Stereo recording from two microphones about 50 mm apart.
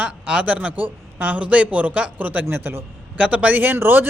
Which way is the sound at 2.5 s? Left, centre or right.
Right.